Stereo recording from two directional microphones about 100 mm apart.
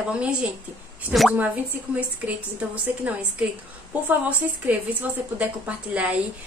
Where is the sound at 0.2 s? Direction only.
10° right (ahead or behind).